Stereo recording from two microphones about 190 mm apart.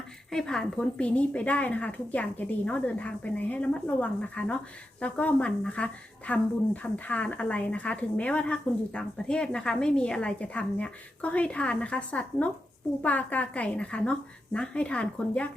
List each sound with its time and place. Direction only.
0.3 s a woman's voice: 5° left (ahead or behind)